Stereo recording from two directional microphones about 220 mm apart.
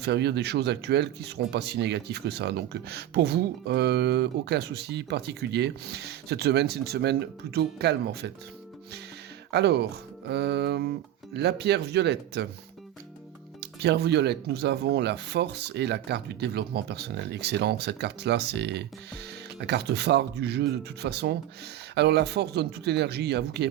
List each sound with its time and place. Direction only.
0.0 s speech: 50° right (ahead or behind)
9.5 s speech: 50° right (ahead or behind)
13.6 s speech: 50° right (ahead or behind)